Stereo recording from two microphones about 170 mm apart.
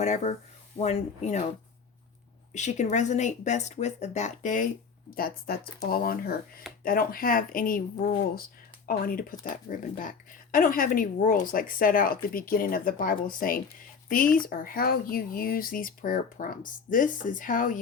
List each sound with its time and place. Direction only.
0.0 s speech: 40° left (ahead or behind)
2.5 s speech: 45° left (ahead or behind)
5.1 s speech: 60° left (ahead or behind)